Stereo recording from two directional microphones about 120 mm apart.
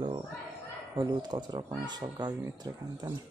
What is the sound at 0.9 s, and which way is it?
Speech, 35° right (ahead or behind).